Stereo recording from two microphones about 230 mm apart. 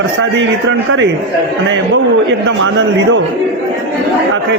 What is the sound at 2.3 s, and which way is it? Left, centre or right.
Speech, right.